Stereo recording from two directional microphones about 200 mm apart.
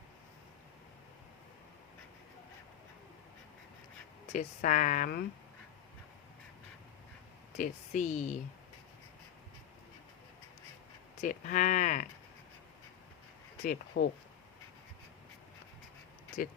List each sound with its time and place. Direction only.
4.3 s speech: 40° left (ahead or behind)
7.5 s speech: 40° left (ahead or behind)
11.2 s speech: 40° left (ahead or behind)
13.7 s speech: 45° left (ahead or behind)